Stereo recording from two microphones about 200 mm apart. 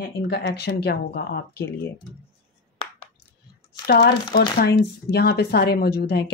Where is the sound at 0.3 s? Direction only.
55° left (ahead or behind).